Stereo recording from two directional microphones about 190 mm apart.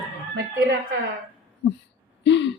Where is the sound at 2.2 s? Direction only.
65° left (ahead or behind).